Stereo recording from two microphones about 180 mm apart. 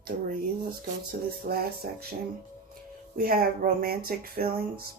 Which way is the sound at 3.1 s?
55° right (ahead or behind).